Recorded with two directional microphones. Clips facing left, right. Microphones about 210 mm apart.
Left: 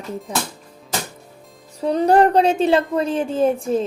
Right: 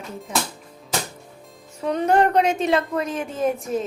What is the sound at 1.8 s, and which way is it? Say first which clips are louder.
Speech: left 4 dB; 35° left (ahead or behind).